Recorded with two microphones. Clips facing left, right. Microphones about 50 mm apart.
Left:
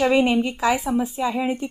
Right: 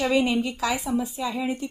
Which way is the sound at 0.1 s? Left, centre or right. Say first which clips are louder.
Left 4 dB; left.